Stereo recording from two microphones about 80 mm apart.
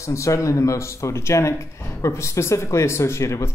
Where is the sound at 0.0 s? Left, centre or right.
Left.